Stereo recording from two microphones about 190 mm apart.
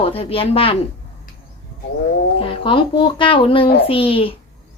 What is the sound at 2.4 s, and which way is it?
A child's voice, 30° left (ahead or behind).